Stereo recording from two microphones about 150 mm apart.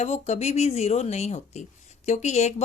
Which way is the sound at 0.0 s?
50° left (ahead or behind).